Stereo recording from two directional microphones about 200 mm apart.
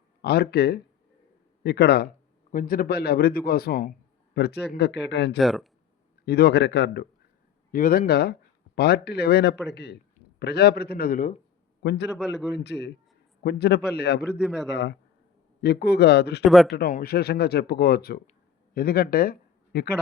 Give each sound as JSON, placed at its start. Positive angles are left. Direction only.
{"t": 0.2, "sound": "a man's voice", "side_deg": 55}
{"t": 5.4, "sound": "a man's voice", "side_deg": 0}
{"t": 6.2, "sound": "speech", "side_deg": 50}
{"t": 7.7, "sound": "a man's voice", "side_deg": 45}
{"t": 11.8, "sound": "a man's voice", "side_deg": 55}
{"t": 14.3, "sound": "a man's voice", "side_deg": 0}
{"t": 14.7, "sound": "speech", "side_deg": 60}
{"t": 16.4, "sound": "a man's voice", "side_deg": 0}
{"t": 16.7, "sound": "a man's voice", "side_deg": 50}